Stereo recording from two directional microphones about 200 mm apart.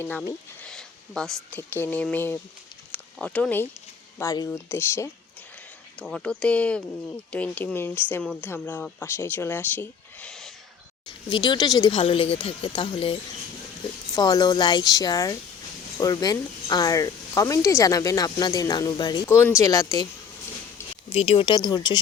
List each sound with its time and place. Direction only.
0.0 s speech: 10° left (ahead or behind)
11.3 s a woman's voice: 20° left (ahead or behind)
21.1 s a woman's voice: 30° left (ahead or behind)